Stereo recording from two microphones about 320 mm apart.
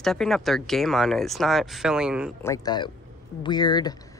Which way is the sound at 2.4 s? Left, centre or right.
Centre.